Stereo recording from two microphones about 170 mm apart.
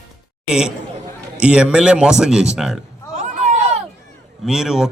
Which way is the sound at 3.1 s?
45° right (ahead or behind).